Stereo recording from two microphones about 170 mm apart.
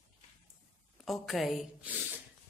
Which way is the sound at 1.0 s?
Centre (ahead or behind).